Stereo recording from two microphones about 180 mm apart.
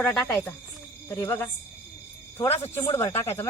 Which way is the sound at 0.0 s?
10° left (ahead or behind).